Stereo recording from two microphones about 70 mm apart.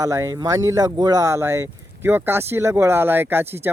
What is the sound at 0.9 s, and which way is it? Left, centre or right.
Speech, right.